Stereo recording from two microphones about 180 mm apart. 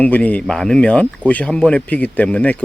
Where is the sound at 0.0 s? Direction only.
10° left (ahead or behind).